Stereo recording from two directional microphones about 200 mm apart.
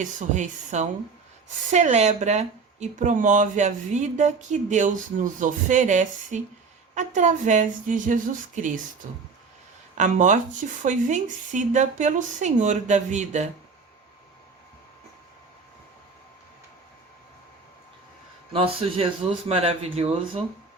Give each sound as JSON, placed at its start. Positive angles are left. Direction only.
{"t": 0.0, "sound": "speech", "side_deg": -40}
{"t": 10.0, "sound": "speech", "side_deg": -40}
{"t": 18.5, "sound": "speech", "side_deg": -30}